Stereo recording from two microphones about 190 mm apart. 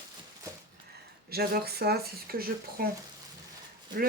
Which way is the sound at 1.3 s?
55° right (ahead or behind).